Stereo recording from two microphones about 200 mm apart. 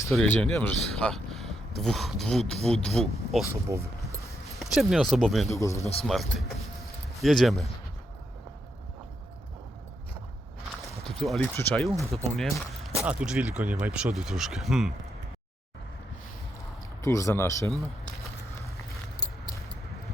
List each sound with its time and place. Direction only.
0.1 s speech: 5° left (ahead or behind)
3.5 s speech: 15° right (ahead or behind)
4.4 s speech: centre (ahead or behind)
5.5 s speech: 15° left (ahead or behind)
5.8 s speech: 30° left (ahead or behind)
6.1 s speech: centre (ahead or behind)
11.0 s speech: centre (ahead or behind)
17.0 s speech: 15° left (ahead or behind)
19.2 s a sound: 20° left (ahead or behind)